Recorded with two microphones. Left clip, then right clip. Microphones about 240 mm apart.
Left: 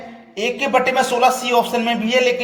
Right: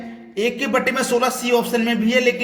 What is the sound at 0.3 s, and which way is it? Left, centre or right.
Speech, right.